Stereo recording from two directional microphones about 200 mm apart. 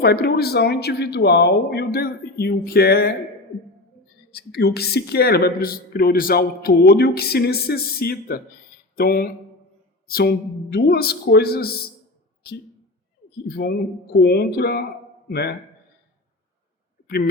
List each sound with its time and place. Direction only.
0.0 s speech: 55° left (ahead or behind)
4.3 s speech: 50° left (ahead or behind)
13.5 s speech: 50° left (ahead or behind)